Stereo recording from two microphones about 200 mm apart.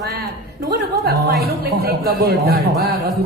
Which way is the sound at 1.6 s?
50° right (ahead or behind).